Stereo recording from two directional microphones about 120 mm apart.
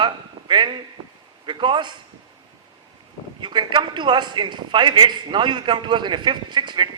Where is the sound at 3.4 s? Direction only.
40° right (ahead or behind).